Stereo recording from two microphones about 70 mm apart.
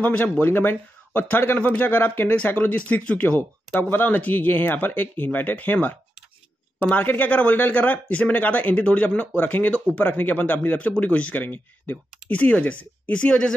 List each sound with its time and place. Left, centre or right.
0.0 s speech: left